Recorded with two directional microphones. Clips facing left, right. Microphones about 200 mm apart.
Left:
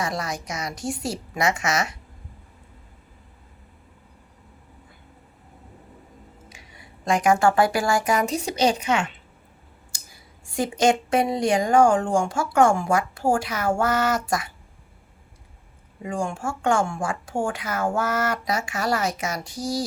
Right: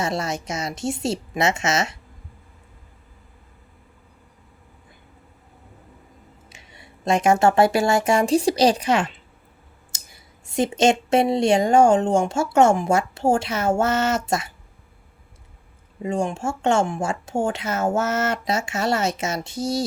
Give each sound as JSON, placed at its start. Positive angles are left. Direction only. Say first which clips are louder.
{"t": 0.0, "sound": "speech", "louder": "right 3 dB", "side_deg": -25}
{"t": 6.5, "sound": "speech", "louder": "even", "side_deg": -25}
{"t": 9.9, "sound": "clicking", "louder": "right 1 dB", "side_deg": -20}
{"t": 10.4, "sound": "speech", "louder": "right 2 dB", "side_deg": -20}
{"t": 16.0, "sound": "speech", "louder": "right 4 dB", "side_deg": -25}